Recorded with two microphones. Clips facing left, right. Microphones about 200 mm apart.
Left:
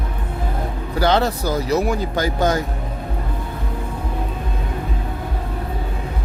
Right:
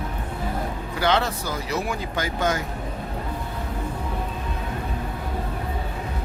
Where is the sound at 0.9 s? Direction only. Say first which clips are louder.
Left 5 dB; 40° left (ahead or behind).